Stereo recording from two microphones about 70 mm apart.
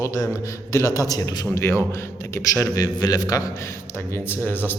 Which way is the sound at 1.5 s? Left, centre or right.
Left.